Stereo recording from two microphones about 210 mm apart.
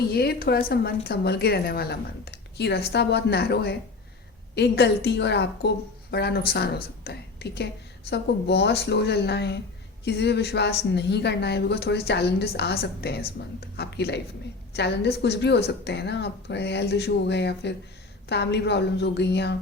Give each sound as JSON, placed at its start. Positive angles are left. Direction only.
{"t": 0.1, "sound": "a woman's voice", "side_deg": 50}